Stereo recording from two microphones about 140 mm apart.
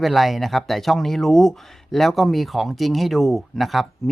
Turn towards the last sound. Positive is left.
turn(degrees=0)  # may be behind; listen again after turning